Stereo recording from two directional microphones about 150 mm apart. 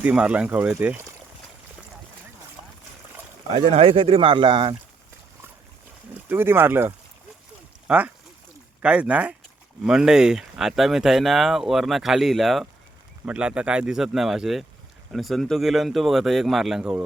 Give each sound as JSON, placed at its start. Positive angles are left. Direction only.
{"t": 0.0, "sound": "speech", "side_deg": -10}
{"t": 3.7, "sound": "speech", "side_deg": -40}
{"t": 6.1, "sound": "speech", "side_deg": -15}